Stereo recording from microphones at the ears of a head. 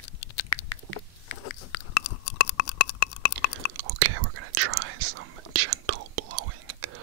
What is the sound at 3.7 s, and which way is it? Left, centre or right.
Whispering, right.